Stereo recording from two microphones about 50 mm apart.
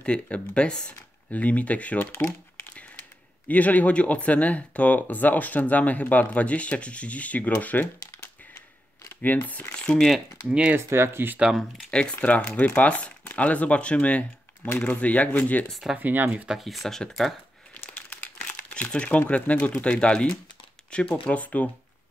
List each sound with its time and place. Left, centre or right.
0.0 s speech: left
1.3 s speech: left
3.4 s speech: left
9.2 s speech: left
9.9 s speech: centre
10.9 s speech: right
11.9 s speech: left
16.0 s speech: right
16.5 s speech: centre
17.9 s speech: left